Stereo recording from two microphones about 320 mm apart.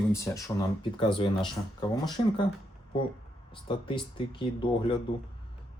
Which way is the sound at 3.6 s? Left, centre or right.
Centre.